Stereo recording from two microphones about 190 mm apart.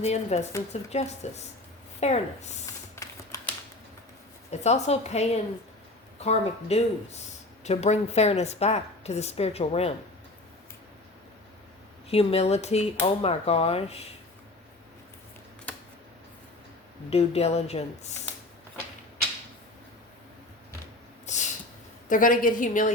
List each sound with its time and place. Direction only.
0.0 s a woman's voice: 35° left (ahead or behind)
2.9 s typing: 15° left (ahead or behind)
4.6 s a woman's voice: 35° left (ahead or behind)
12.1 s a woman's voice: 30° left (ahead or behind)
17.1 s a woman's voice: 35° left (ahead or behind)
21.3 s a sound: 35° left (ahead or behind)
22.1 s a woman's voice: 45° left (ahead or behind)